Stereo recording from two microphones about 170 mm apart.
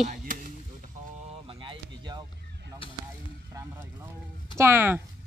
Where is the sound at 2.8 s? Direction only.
30° left (ahead or behind).